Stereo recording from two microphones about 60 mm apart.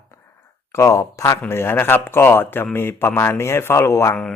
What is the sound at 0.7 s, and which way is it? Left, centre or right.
Speech, left.